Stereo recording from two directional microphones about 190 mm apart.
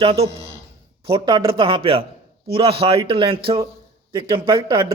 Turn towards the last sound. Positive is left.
turn(degrees=-25)  # may be behind; listen again after turning